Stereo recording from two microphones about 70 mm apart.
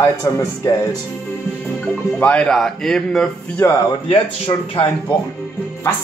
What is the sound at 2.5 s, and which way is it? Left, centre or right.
Speech, centre.